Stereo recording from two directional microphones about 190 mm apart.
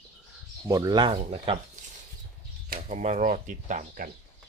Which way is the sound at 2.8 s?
35° right (ahead or behind).